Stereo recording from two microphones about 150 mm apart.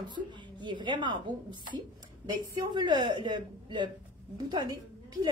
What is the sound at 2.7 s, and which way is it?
A woman's voice, 30° right (ahead or behind).